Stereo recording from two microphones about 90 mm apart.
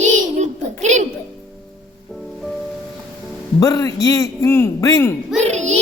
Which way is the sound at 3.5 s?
45° left (ahead or behind).